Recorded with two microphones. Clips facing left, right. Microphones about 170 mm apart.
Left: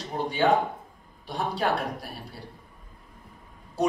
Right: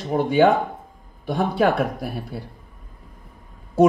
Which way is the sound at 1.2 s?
50° right (ahead or behind).